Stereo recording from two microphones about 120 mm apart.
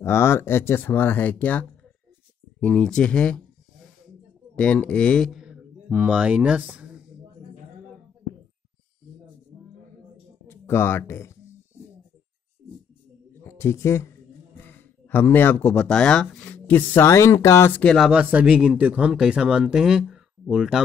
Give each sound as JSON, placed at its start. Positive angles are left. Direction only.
{"t": 0.0, "sound": "speech", "side_deg": 20}
{"t": 4.6, "sound": "speech", "side_deg": 10}
{"t": 10.4, "sound": "speech", "side_deg": 20}
{"t": 13.3, "sound": "a sound", "side_deg": 20}
{"t": 14.7, "sound": "speech", "side_deg": 15}
{"t": 17.8, "sound": "speech", "side_deg": 0}